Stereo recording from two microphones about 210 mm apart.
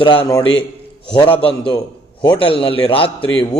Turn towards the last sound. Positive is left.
turn(degrees=25)  # may be behind; listen again after turning